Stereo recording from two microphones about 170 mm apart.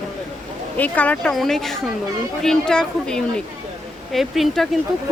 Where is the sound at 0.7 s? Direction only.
10° left (ahead or behind).